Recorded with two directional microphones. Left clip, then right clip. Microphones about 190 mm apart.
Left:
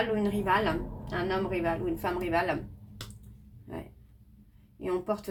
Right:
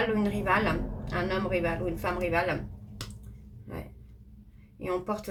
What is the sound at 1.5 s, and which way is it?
Speech, 30° left (ahead or behind).